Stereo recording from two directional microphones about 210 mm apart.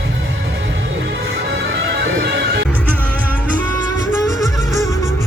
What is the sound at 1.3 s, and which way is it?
Music, 55° right (ahead or behind).